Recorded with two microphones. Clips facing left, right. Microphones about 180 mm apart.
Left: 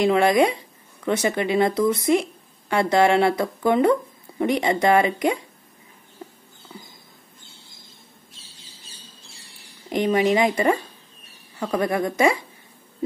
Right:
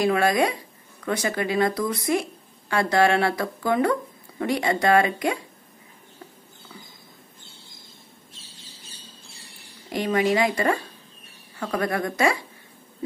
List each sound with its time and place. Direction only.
0.0 s speech: 20° left (ahead or behind)
9.8 s speech: 20° left (ahead or behind)